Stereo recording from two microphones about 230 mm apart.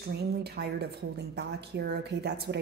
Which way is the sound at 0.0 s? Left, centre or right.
Right.